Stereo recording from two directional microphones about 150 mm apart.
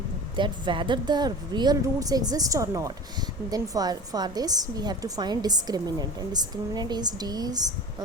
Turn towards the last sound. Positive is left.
turn(degrees=-25)  # may be behind; listen again after turning